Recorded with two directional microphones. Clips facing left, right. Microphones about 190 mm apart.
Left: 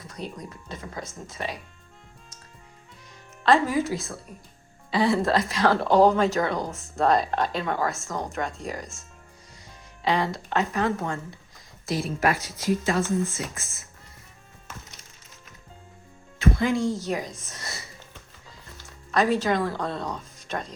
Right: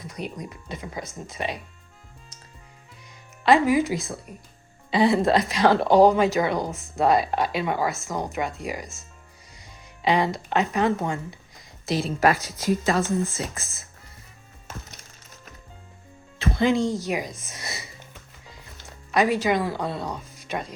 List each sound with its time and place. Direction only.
0.1 s a woman's voice: 15° right (ahead or behind)
3.4 s a woman's voice: 10° right (ahead or behind)
10.0 s a woman's voice: 15° right (ahead or behind)
12.2 s speech: 40° right (ahead or behind)
16.6 s a woman's voice: 20° right (ahead or behind)
19.1 s a woman's voice: 10° right (ahead or behind)